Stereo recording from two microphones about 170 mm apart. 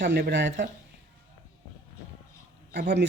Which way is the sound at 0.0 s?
85° right.